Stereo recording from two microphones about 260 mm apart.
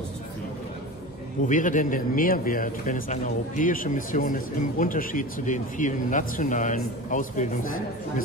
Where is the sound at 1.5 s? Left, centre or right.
Left.